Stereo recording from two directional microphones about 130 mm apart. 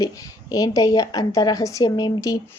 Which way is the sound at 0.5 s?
25° left (ahead or behind).